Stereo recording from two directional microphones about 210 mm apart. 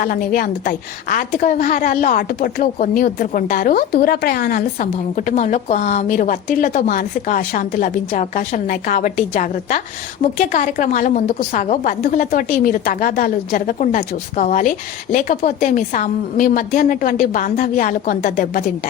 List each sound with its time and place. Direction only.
0.0 s a woman's voice: 40° left (ahead or behind)